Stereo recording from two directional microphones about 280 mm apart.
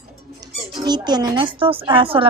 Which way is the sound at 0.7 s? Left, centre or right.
Centre.